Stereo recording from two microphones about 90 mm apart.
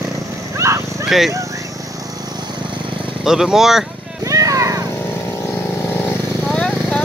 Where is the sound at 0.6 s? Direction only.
35° right (ahead or behind).